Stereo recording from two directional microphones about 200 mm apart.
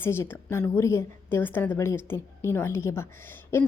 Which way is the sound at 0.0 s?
10° left (ahead or behind).